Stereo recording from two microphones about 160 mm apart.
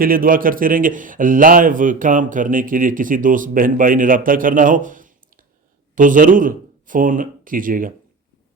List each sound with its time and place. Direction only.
0.0 s a man's voice: 60° right (ahead or behind)